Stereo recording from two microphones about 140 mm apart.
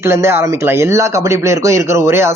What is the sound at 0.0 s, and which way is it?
Speech, 20° right (ahead or behind).